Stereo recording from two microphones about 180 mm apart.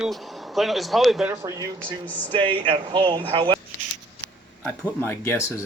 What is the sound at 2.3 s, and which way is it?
Speech, 30° right (ahead or behind).